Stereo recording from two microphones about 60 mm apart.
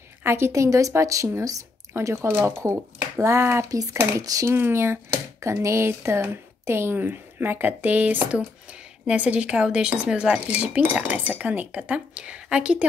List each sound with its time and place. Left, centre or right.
0.2 s a woman's voice: right
2.0 s speech: right
4.2 s speech: right
4.5 s speech: right
7.0 s speech: right; by 12.8 s centre